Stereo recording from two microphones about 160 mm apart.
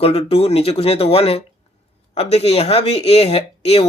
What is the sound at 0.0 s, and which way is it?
Speech, 40° left (ahead or behind).